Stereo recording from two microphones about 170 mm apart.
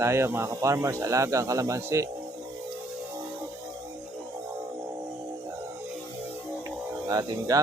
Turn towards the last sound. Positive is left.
turn(degrees=-20)  # may be behind; listen again after turning